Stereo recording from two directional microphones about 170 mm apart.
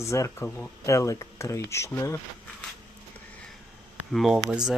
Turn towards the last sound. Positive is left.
turn(degrees=0)  # may be behind; listen again after turning